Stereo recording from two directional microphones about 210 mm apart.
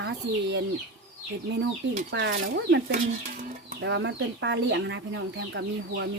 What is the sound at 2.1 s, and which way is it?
Speech, 60° right (ahead or behind).